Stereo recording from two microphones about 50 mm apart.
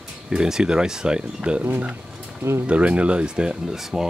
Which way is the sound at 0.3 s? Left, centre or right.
Centre.